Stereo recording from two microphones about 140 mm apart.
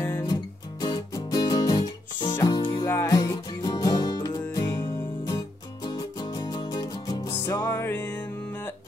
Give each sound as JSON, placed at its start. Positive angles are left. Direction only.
{"t": 0.3, "sound": "music", "side_deg": 30}
{"t": 5.9, "sound": "music", "side_deg": 30}